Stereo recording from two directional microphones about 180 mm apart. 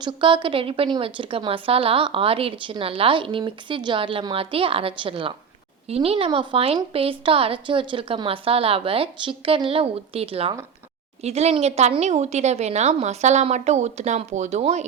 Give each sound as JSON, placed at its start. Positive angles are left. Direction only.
{"t": 0.0, "sound": "a woman's voice", "side_deg": -25}